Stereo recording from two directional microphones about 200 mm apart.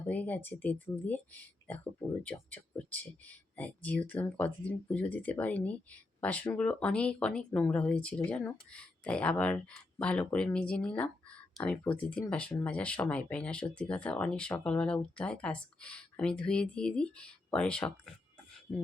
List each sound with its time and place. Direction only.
0.1 s speech: 10° left (ahead or behind)